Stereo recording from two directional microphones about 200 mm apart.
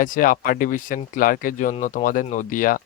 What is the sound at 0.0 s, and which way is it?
Speech, 45° left (ahead or behind).